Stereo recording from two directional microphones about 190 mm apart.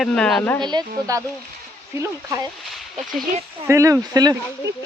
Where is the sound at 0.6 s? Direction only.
20° right (ahead or behind).